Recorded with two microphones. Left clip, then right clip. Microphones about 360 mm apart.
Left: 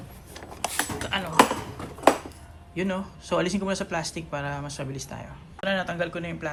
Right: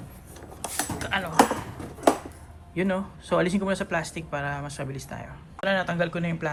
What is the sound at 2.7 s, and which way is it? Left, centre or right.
Speech, centre.